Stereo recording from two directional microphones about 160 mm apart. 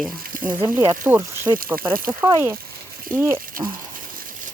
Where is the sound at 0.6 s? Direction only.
25° right (ahead or behind).